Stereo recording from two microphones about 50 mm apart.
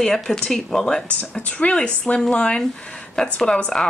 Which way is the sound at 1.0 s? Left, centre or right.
Left.